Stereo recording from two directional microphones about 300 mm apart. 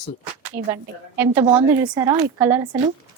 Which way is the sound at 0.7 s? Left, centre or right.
Centre.